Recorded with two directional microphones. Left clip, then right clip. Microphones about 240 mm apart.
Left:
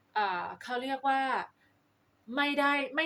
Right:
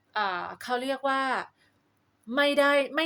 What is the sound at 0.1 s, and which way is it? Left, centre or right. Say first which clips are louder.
A woman's voice: right 2 dB; right.